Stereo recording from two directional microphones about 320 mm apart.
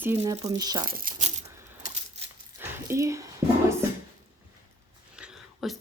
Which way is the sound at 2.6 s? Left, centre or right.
Centre.